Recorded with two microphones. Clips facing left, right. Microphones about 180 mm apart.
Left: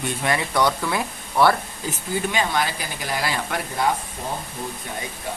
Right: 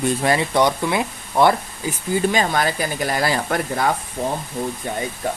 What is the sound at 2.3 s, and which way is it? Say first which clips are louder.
Speech: right 4 dB; 45° right (ahead or behind).